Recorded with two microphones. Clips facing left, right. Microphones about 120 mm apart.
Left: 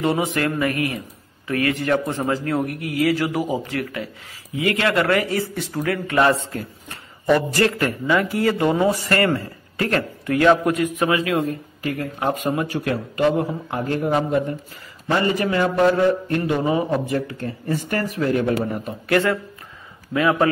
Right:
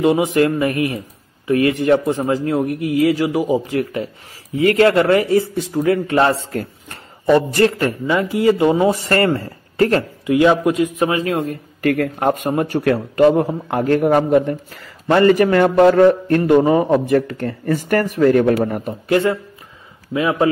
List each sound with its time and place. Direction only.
0.0 s a man's voice: 20° right (ahead or behind)
3.2 s a man's voice: 15° right (ahead or behind)
4.6 s speech: 35° right (ahead or behind)
4.9 s a man's voice: 25° right (ahead or behind)
7.3 s a man's voice: 30° right (ahead or behind)
10.2 s a man's voice: 20° right (ahead or behind); by 11.4 s 40° right (ahead or behind)
11.8 s speech: 70° right (ahead or behind)
12.3 s a man's voice: 50° right (ahead or behind); by 17.7 s 70° right (ahead or behind)
17.8 s a man's voice: 55° right (ahead or behind)
19.0 s a man's voice: 20° right (ahead or behind)